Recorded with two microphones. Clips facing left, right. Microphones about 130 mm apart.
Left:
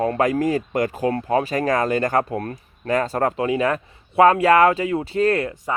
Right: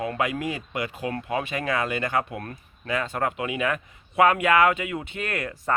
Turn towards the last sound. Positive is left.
turn(degrees=30)  # may be behind; listen again after turning